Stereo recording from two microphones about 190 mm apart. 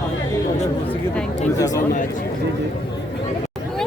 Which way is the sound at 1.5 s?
20° left (ahead or behind).